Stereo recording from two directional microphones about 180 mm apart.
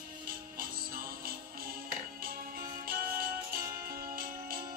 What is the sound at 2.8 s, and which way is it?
Music, 55° right (ahead or behind).